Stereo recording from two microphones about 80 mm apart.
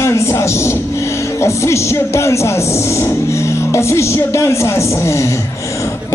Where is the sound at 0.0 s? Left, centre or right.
Left.